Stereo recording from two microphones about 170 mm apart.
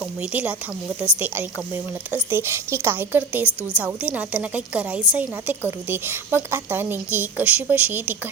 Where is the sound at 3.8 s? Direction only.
10° right (ahead or behind).